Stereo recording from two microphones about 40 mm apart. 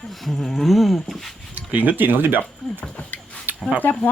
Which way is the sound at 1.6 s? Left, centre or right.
Right.